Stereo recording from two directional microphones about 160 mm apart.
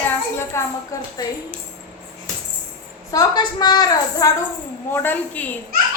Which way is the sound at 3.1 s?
25° left (ahead or behind).